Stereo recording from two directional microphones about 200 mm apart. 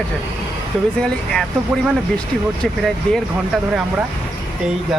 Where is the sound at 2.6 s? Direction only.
Centre (ahead or behind).